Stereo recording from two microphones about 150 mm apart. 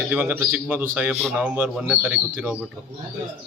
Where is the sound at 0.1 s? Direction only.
10° right (ahead or behind).